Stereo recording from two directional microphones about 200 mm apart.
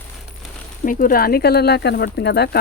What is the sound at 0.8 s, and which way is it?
Speech, 40° left (ahead or behind).